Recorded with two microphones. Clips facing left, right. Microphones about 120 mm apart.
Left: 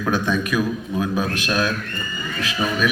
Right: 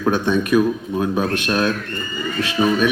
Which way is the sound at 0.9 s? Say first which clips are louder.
Right 1 dB; 30° right (ahead or behind).